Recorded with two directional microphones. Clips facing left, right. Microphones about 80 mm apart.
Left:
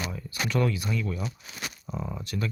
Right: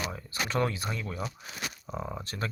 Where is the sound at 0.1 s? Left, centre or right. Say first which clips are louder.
Left 2 dB; right.